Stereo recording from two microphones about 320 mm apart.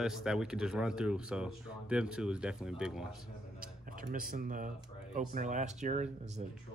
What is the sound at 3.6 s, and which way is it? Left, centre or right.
Speech, right.